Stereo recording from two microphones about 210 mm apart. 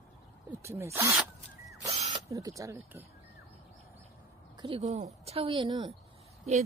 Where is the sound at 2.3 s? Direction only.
15° right (ahead or behind).